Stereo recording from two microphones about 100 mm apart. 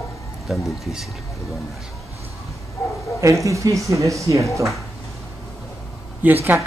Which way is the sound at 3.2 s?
30° right (ahead or behind).